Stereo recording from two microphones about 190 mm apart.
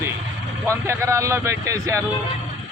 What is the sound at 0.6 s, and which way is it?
Speech, 15° right (ahead or behind).